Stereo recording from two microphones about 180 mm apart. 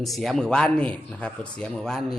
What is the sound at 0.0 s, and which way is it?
Speech, centre (ahead or behind).